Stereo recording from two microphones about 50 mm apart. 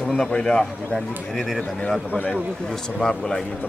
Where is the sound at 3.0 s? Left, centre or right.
Centre.